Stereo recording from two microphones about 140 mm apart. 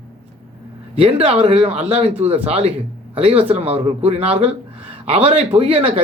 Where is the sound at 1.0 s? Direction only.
45° right (ahead or behind).